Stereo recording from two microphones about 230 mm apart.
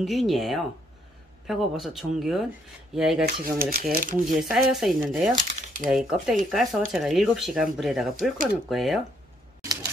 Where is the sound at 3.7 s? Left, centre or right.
Right.